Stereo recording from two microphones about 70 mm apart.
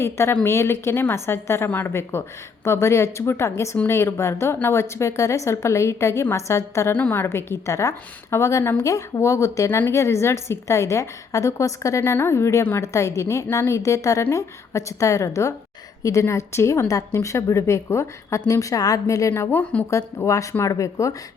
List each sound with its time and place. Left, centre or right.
0.0 s a woman's voice: left
6.9 s a woman's voice: left
7.3 s a woman's voice: left
19.9 s a woman's voice: left